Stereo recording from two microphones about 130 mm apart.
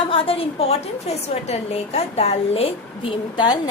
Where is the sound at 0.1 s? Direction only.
45° left (ahead or behind).